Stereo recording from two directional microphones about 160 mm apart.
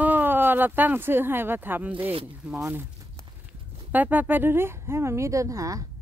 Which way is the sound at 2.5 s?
10° right (ahead or behind).